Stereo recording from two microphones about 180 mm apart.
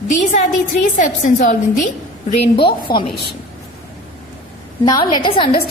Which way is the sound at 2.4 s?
30° left (ahead or behind).